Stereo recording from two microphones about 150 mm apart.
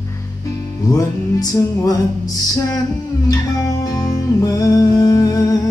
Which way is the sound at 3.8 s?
25° left (ahead or behind).